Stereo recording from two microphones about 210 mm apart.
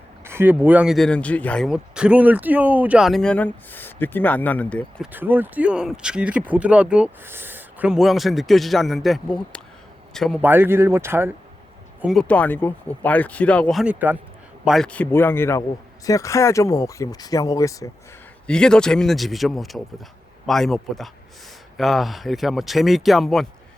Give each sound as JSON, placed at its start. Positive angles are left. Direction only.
{"t": 0.3, "sound": "speech", "side_deg": -10}
{"t": 5.1, "sound": "speech", "side_deg": -10}
{"t": 12.0, "sound": "speech", "side_deg": 5}
{"t": 18.4, "sound": "speech", "side_deg": 5}